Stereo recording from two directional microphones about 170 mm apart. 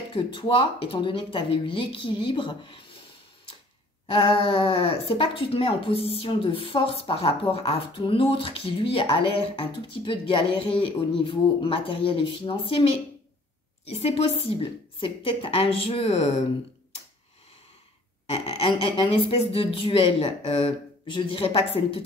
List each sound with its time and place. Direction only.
0.1 s speech: 30° left (ahead or behind)
4.1 s speech: 35° left (ahead or behind)
13.8 s speech: 35° left (ahead or behind)
18.3 s speech: 35° left (ahead or behind)